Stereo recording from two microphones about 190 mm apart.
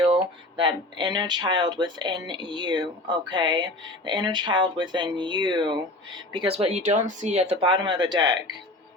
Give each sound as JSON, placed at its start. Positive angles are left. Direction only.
{"t": 0.1, "sound": "speech", "side_deg": -25}